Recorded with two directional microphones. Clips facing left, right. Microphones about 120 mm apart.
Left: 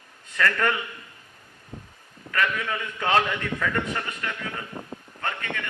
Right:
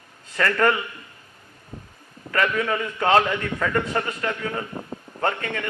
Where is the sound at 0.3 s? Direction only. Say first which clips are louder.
Right 4 dB; 35° right (ahead or behind).